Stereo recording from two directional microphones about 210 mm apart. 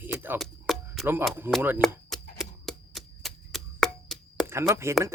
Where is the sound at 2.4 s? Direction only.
Centre (ahead or behind).